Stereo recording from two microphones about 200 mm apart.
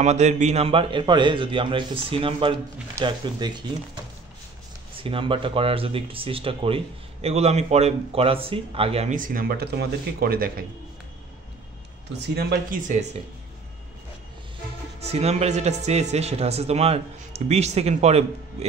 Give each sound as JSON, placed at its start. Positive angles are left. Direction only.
{"t": 0.0, "sound": "speech", "side_deg": -35}
{"t": 12.1, "sound": "speech", "side_deg": -55}
{"t": 12.9, "sound": "speech", "side_deg": -35}
{"t": 15.0, "sound": "speech", "side_deg": -30}